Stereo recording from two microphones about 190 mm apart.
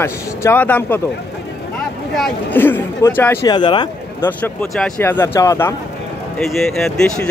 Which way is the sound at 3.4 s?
25° left (ahead or behind).